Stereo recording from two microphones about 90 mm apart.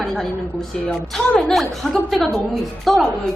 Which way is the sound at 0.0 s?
5° left (ahead or behind).